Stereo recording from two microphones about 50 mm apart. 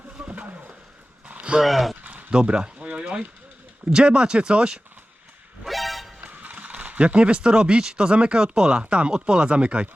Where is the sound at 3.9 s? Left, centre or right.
Centre.